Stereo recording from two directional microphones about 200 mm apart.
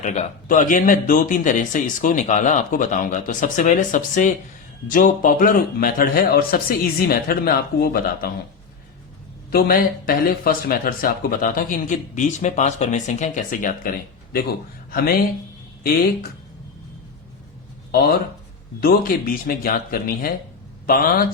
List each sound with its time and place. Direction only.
0.0 s speech: 40° left (ahead or behind)
9.5 s speech: 50° left (ahead or behind)
18.8 s speech: 45° left (ahead or behind)